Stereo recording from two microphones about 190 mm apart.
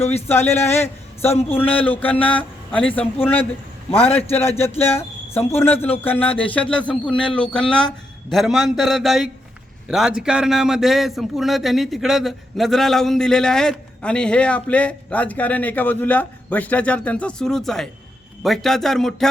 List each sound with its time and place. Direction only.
0.0 s speech: 35° left (ahead or behind)
0.3 s a man's voice: 10° left (ahead or behind)